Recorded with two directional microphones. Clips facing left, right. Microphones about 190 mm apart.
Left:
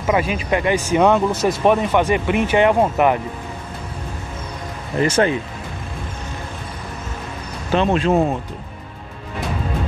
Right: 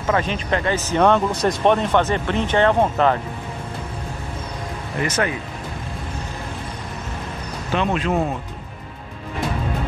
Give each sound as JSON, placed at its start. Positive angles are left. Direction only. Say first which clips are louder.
{"t": 0.0, "sound": "speech", "louder": "left 2 dB", "side_deg": 10}
{"t": 5.0, "sound": "speech", "louder": "left 6 dB", "side_deg": 30}
{"t": 7.7, "sound": "speech", "louder": "left 4 dB", "side_deg": 30}